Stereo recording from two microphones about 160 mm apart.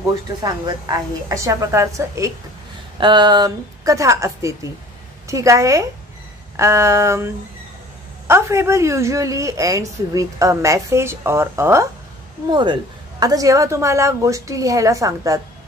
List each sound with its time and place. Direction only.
0.4 s a woman's voice: 25° right (ahead or behind)
12.4 s a woman's voice: 30° right (ahead or behind)